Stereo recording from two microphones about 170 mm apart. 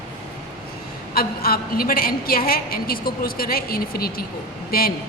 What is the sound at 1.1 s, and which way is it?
A woman's voice, 60° left (ahead or behind).